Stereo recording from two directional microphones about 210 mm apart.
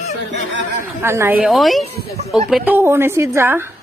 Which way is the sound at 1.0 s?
10° right (ahead or behind).